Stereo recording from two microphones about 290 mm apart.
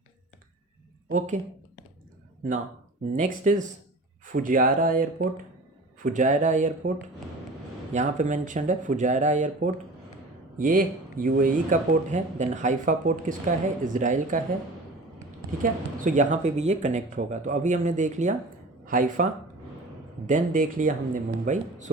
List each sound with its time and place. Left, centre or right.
1.0 s speech: right
3.1 s speech: right
7.9 s speech: right
15.6 s speech: right